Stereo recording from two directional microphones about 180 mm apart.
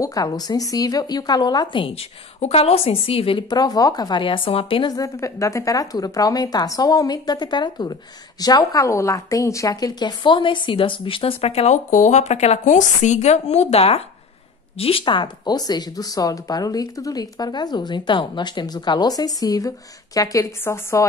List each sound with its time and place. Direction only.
0.0 s a woman's voice: 20° left (ahead or behind)